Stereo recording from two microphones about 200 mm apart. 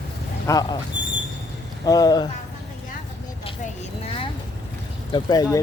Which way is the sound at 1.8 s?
20° left (ahead or behind).